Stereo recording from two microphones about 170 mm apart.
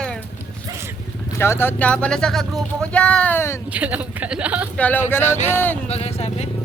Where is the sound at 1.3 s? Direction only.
15° left (ahead or behind).